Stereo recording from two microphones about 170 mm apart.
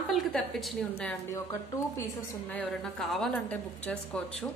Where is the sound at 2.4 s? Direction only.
5° left (ahead or behind).